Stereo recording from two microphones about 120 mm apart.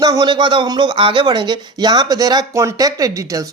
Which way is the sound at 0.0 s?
30° right (ahead or behind).